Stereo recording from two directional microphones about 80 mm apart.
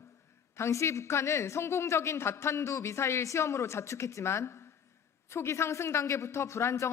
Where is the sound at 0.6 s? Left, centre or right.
Left.